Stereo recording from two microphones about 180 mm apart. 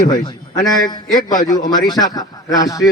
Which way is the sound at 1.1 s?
20° left (ahead or behind).